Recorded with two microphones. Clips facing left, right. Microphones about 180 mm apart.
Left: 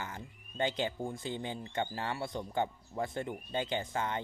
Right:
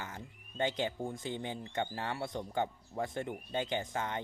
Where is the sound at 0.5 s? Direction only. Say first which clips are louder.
Even; 20° right (ahead or behind).